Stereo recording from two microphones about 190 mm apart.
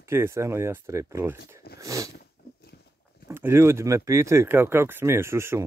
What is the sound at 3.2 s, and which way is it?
Speech, 10° right (ahead or behind).